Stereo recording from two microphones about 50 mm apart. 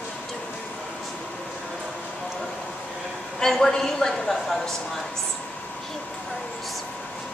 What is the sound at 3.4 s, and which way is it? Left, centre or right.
A woman's voice, centre.